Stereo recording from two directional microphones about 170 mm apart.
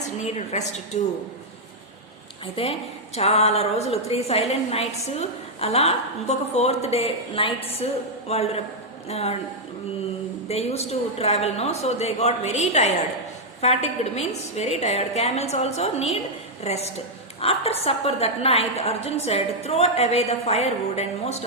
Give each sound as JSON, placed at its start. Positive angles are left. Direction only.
{"t": 0.0, "sound": "a woman's voice", "side_deg": 40}
{"t": 2.6, "sound": "a woman's voice", "side_deg": 35}
{"t": 10.5, "sound": "a woman's voice", "side_deg": 40}